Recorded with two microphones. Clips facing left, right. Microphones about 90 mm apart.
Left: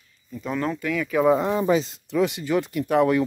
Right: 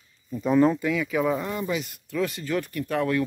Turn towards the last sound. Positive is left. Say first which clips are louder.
# left 5 dB
turn(degrees=15)  # may be behind; listen again after turning